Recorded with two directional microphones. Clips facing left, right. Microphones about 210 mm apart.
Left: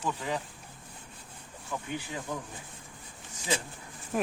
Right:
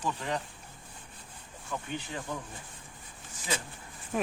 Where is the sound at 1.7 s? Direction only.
15° left (ahead or behind).